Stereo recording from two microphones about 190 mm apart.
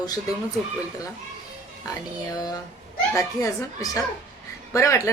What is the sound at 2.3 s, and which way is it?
Speech, 20° left (ahead or behind).